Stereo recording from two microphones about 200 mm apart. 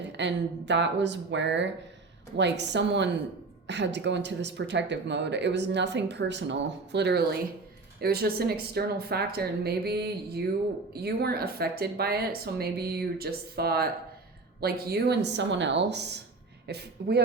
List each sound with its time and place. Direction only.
0.2 s speech: 60° right (ahead or behind)